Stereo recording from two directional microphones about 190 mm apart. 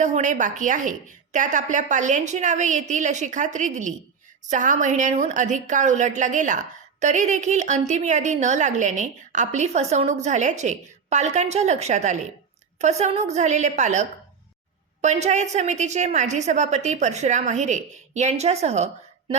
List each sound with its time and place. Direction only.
0.0 s a woman's voice: 40° right (ahead or behind)